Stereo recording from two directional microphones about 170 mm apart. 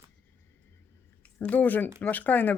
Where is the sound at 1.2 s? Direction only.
10° left (ahead or behind).